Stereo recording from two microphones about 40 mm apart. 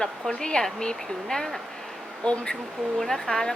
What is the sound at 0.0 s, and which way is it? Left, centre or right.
Speech, centre.